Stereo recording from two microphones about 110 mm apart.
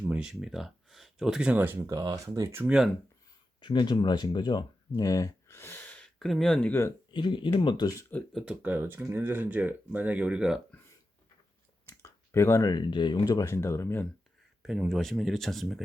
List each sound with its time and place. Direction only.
0.0 s speech: 10° right (ahead or behind)
3.6 s speech: 45° left (ahead or behind)
4.9 s speech: 30° left (ahead or behind); by 6.1 s 15° left (ahead or behind)
6.1 s speech: centre (ahead or behind)
7.1 s speech: 45° left (ahead or behind)
8.3 s speech: centre (ahead or behind)
8.6 s speech: 15° right (ahead or behind)
11.9 s clicking: 25° left (ahead or behind)
12.7 s speech: 45° left (ahead or behind); by 14.0 s 25° left (ahead or behind)
14.6 s speech: centre (ahead or behind)